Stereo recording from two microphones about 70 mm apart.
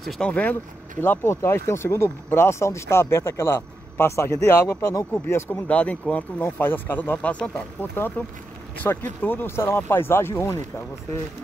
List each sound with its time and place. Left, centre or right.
0.2 s speech: centre
1.0 s speech: left
5.7 s speech: centre
6.4 s speech: left
7.2 s speech: centre
8.0 s speech: left